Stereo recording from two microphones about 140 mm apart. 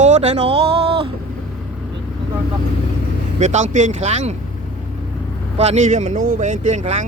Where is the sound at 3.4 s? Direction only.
55° right (ahead or behind).